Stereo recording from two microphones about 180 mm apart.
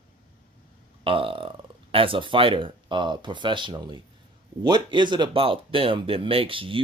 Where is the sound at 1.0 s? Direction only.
30° right (ahead or behind).